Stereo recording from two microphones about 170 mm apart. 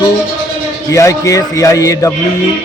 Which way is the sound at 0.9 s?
20° left (ahead or behind).